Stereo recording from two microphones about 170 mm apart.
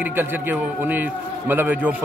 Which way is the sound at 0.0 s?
10° right (ahead or behind).